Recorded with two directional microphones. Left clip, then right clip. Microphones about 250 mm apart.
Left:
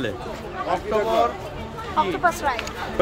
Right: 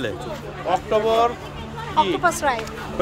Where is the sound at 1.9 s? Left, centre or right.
Right.